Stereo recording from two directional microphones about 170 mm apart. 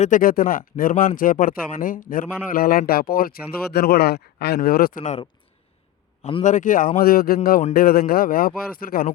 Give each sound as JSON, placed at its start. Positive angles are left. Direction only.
{"t": 0.0, "sound": "speech", "side_deg": 50}
{"t": 6.4, "sound": "a man's voice", "side_deg": 50}